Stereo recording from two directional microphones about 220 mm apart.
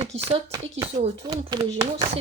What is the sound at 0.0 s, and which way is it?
A child's voice, 25° right (ahead or behind).